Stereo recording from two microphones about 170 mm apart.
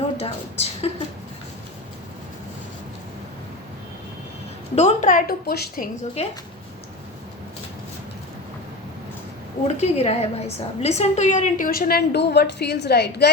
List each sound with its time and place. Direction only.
0.2 s a woman's voice: 35° left (ahead or behind)
4.7 s a woman's voice: 45° left (ahead or behind); by 5.9 s 60° left (ahead or behind)
6.2 s a woman's voice: 40° left (ahead or behind)
9.8 s a woman's voice: 35° left (ahead or behind); by 13.3 s 75° left (ahead or behind)